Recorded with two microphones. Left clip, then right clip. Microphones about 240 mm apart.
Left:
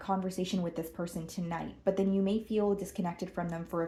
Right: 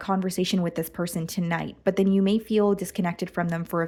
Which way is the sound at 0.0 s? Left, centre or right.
Right.